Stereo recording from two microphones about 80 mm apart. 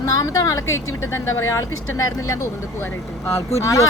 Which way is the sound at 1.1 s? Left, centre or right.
Left.